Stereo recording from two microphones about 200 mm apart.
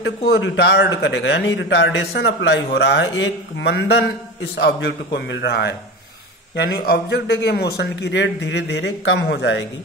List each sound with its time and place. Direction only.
0.2 s a man's voice: 55° left (ahead or behind)